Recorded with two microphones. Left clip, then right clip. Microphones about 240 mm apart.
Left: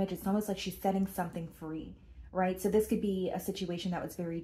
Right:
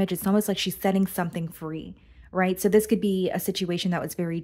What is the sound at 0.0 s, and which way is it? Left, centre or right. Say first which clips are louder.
Speech: right 9 dB; right.